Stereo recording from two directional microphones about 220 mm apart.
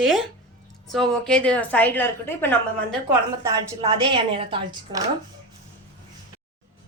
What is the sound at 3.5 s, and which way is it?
Speech, 20° right (ahead or behind).